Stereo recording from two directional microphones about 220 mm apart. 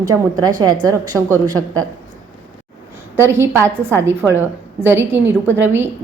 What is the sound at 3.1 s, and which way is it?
A woman's voice, 10° right (ahead or behind).